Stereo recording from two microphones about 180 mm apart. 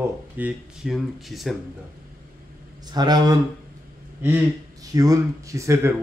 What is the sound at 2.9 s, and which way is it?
Speech, 20° right (ahead or behind).